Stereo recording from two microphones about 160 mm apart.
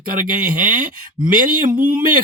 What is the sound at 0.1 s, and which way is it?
Speech, 55° right (ahead or behind).